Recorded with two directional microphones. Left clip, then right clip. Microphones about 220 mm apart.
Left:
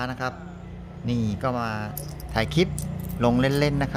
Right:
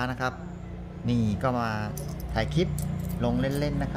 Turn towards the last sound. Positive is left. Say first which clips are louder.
# left 6 dB
turn(degrees=30)  # may be behind; listen again after turning